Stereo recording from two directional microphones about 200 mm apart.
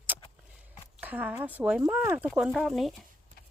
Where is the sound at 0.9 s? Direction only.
10° right (ahead or behind).